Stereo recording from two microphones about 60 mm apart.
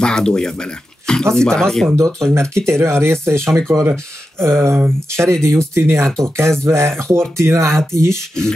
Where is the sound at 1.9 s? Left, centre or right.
Right.